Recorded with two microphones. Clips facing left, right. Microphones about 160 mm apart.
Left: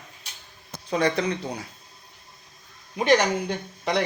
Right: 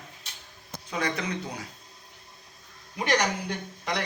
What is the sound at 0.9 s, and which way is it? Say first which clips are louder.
Speech: left 7 dB; 35° left (ahead or behind).